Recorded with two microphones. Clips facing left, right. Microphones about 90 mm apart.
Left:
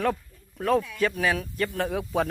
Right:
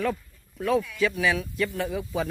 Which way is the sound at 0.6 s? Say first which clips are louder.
Even; 55° left (ahead or behind).